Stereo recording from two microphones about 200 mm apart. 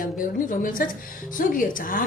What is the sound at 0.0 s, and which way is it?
A woman's voice, 45° left (ahead or behind).